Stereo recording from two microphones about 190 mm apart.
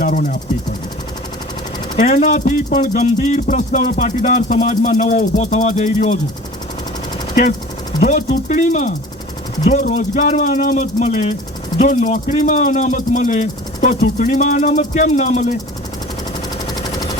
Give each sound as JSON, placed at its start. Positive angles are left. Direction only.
{"t": 0.0, "sound": "speech", "side_deg": 40}
{"t": 2.0, "sound": "speech", "side_deg": 40}
{"t": 8.0, "sound": "speech", "side_deg": 40}